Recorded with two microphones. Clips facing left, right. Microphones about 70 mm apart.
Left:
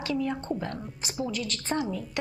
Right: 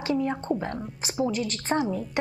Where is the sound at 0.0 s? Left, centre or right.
Right.